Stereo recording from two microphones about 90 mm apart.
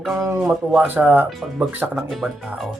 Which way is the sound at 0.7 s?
20° right (ahead or behind).